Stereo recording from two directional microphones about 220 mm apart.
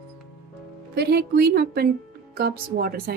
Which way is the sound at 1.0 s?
45° right (ahead or behind).